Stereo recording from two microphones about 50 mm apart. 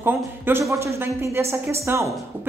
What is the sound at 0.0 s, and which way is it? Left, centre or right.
Speech, right.